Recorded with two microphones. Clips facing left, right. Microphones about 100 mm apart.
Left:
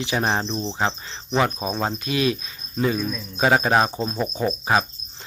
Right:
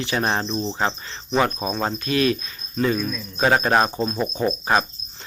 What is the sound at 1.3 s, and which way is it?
Cricket, 5° left (ahead or behind).